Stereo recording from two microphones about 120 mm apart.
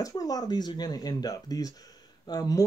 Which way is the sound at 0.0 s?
30° left (ahead or behind).